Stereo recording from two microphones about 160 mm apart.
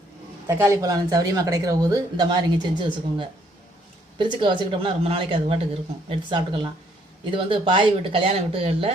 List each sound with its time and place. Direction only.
0.4 s a woman's voice: 15° right (ahead or behind); by 8.9 s 35° right (ahead or behind)